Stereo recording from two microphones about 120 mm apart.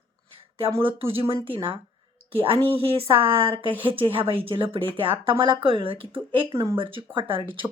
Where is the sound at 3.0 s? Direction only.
50° right (ahead or behind).